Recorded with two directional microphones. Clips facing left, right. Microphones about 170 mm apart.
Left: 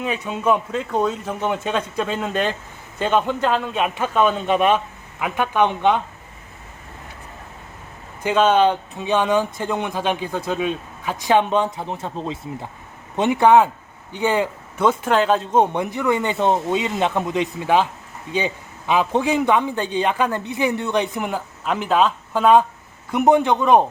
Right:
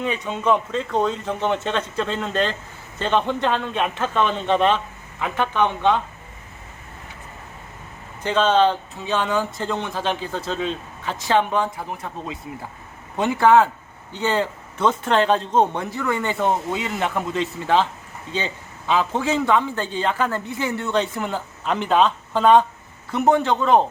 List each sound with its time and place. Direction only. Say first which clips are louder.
0.0 s a man's voice: left 1 dB; 5° left (ahead or behind)
8.2 s a man's voice: left 2 dB; 10° left (ahead or behind)